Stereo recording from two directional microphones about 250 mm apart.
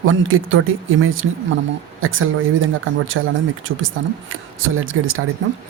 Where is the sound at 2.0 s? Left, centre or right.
Right.